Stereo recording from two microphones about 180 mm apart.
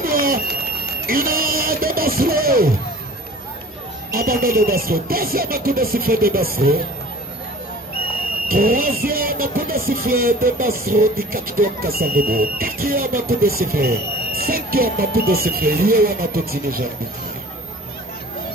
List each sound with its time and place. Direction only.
0.0 s pigeon: 55° right (ahead or behind)
1.0 s music: 55° right (ahead or behind)
4.1 s speech: 55° right (ahead or behind)
8.5 s speech: 55° right (ahead or behind)